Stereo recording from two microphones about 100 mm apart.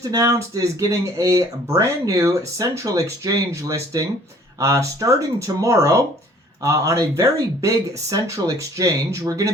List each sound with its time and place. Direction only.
0.0 s speech: 35° right (ahead or behind)